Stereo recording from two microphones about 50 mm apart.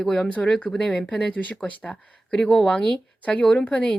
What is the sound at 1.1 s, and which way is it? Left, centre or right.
A woman's voice, left.